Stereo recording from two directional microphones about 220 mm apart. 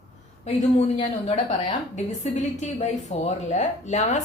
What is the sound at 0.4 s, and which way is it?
Speech, 30° left (ahead or behind).